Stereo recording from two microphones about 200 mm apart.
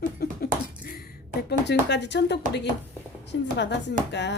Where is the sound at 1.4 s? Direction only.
55° left (ahead or behind).